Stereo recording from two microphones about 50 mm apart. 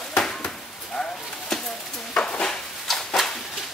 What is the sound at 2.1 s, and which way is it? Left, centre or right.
Dishes, centre.